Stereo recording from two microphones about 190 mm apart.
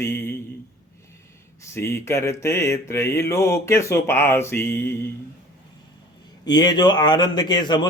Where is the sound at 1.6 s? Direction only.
15° left (ahead or behind).